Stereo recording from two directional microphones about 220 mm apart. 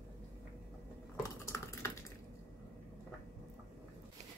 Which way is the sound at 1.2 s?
15° left (ahead or behind).